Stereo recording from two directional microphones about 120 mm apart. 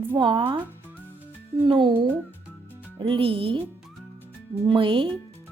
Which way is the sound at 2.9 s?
45° right (ahead or behind).